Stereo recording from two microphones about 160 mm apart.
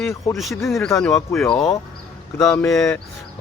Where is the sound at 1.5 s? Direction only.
20° left (ahead or behind).